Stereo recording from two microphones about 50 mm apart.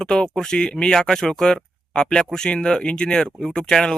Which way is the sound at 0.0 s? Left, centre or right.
Centre.